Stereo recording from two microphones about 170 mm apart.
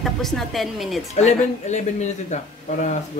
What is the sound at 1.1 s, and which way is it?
Speech, 45° left (ahead or behind).